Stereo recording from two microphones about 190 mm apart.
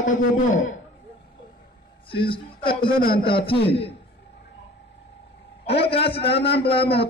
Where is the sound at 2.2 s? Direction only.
25° left (ahead or behind).